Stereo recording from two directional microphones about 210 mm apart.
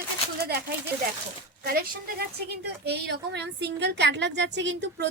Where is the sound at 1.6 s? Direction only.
45° right (ahead or behind).